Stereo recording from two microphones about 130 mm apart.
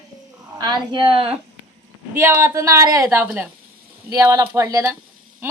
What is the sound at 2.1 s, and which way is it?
A woman's voice, 20° right (ahead or behind).